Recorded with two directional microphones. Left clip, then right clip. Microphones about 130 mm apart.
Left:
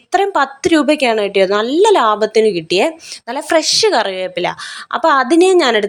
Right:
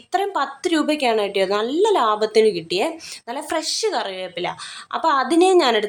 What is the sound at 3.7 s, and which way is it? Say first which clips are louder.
A woman's voice: left 10 dB; 55° left (ahead or behind).